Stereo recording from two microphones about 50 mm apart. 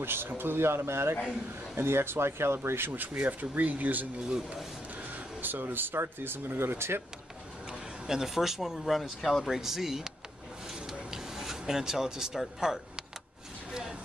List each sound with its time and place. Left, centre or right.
0.0 s speech: right
3.3 s speech: right
8.1 s speech: centre
13.7 s a sound: centre